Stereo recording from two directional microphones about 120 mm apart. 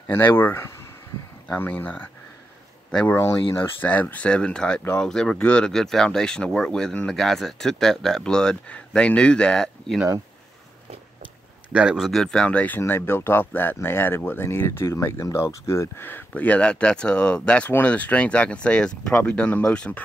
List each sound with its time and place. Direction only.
0.0 s speech: 15° left (ahead or behind)
11.7 s speech: 5° right (ahead or behind)